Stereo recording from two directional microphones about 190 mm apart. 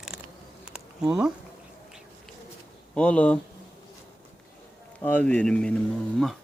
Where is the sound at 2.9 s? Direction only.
5° left (ahead or behind).